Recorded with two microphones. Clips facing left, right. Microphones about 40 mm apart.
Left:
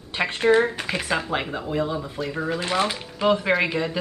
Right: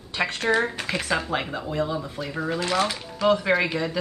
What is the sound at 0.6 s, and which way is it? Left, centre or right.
Speech, centre.